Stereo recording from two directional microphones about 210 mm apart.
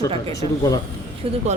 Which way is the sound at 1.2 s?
25° right (ahead or behind).